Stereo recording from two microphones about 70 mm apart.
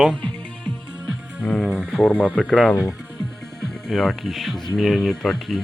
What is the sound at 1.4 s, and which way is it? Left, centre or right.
Speech, centre.